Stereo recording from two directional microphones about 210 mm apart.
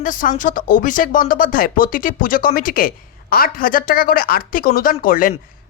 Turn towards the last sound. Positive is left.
turn(degrees=40)  # may be behind; listen again after turning